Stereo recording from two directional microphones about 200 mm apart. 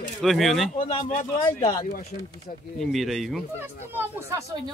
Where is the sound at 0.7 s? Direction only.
35° left (ahead or behind).